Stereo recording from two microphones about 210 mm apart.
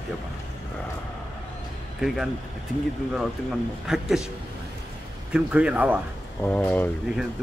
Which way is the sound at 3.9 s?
Centre (ahead or behind).